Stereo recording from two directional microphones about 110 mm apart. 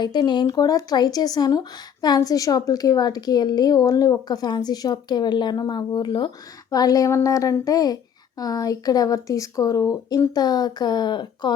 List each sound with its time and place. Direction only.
0.0 s speech: 40° left (ahead or behind)
6.7 s speech: 35° left (ahead or behind)